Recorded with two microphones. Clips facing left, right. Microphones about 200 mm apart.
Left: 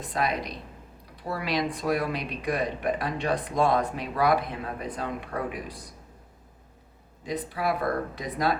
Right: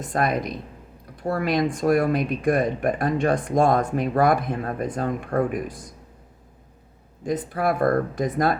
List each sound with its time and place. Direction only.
0.0 s speech: 50° right (ahead or behind)
7.3 s speech: 50° right (ahead or behind)